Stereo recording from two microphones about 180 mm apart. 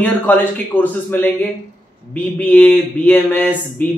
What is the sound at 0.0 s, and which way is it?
Speech, 10° left (ahead or behind).